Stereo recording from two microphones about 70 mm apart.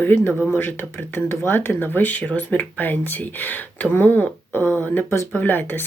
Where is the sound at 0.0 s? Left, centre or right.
Left.